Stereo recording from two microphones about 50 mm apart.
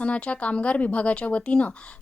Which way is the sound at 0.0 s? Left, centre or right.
Left.